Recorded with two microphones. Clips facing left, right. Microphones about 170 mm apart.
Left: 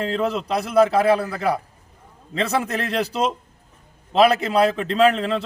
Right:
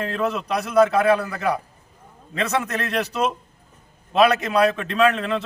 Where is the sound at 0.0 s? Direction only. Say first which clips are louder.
Left 2 dB; 30° left (ahead or behind).